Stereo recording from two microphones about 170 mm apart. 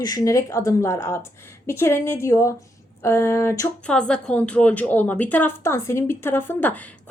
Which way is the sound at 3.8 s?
5° left (ahead or behind).